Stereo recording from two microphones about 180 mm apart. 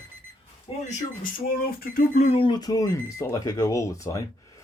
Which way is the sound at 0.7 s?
30° left (ahead or behind).